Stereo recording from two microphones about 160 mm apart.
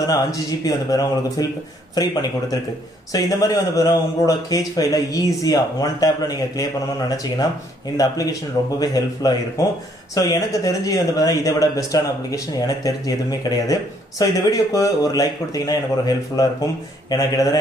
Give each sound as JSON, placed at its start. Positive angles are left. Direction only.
{"t": 0.0, "sound": "speech", "side_deg": 20}